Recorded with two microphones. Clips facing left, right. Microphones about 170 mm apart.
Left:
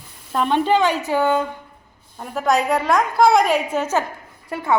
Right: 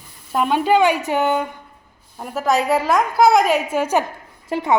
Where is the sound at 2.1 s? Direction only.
5° right (ahead or behind).